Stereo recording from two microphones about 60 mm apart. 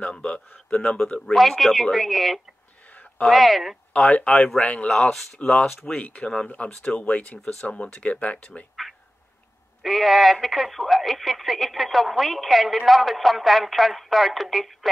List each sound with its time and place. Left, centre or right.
0.0 s a man's voice: centre
1.3 s speech: centre
2.9 s a sound: left
3.3 s speech: centre
4.0 s a man's voice: centre
5.1 s a man's voice: centre
5.9 s speech: left
9.8 s speech: centre